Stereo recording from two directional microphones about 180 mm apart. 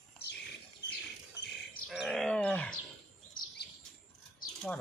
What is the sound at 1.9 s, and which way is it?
Speech, centre (ahead or behind).